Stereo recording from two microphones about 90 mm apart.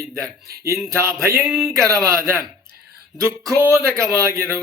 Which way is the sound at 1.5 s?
5° right (ahead or behind).